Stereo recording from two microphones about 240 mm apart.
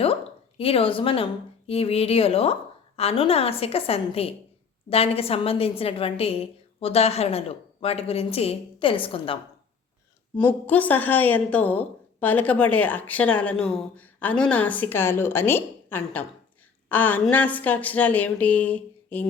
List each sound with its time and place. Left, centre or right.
0.0 s a woman's voice: left
10.3 s a woman's voice: centre